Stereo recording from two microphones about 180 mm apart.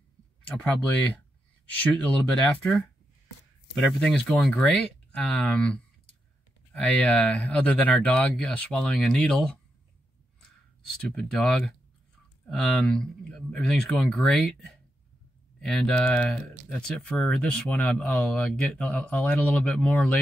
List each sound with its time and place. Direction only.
0.5 s speech: 10° left (ahead or behind)
4.0 s speech: 5° left (ahead or behind)
11.0 s speech: 5° left (ahead or behind)